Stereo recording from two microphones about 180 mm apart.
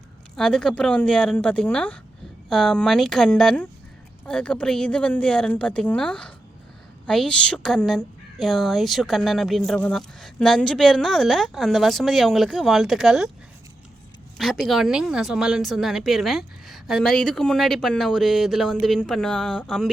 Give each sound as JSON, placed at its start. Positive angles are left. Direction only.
{"t": 0.3, "sound": "a woman's voice", "side_deg": 5}
{"t": 14.3, "sound": "a woman's voice", "side_deg": 0}